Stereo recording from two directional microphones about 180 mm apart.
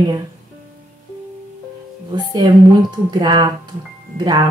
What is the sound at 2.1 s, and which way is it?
Speech, 20° right (ahead or behind).